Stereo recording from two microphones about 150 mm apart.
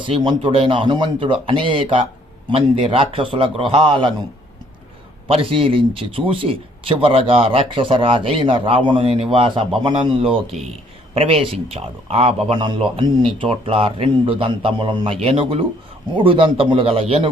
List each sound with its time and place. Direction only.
0.0 s speech: 35° right (ahead or behind)
5.3 s speech: 35° right (ahead or behind)